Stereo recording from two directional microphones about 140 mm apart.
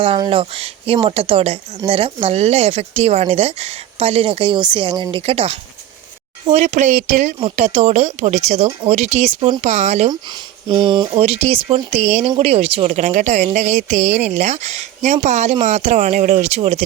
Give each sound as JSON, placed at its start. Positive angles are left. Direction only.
{"t": 0.2, "sound": "speech", "side_deg": -40}
{"t": 10.1, "sound": "speech", "side_deg": -30}
{"t": 11.2, "sound": "speech", "side_deg": -45}